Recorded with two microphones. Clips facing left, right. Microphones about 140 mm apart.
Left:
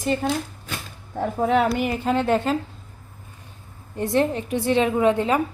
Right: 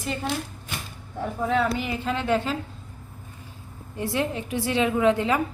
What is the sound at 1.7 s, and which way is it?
Speech, 50° left (ahead or behind).